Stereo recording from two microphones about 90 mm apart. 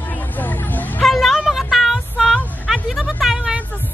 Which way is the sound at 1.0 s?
Centre (ahead or behind).